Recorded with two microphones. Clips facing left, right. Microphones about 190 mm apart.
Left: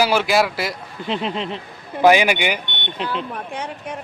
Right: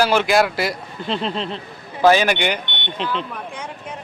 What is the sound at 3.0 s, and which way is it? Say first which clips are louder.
Speech: even; 45° left (ahead or behind).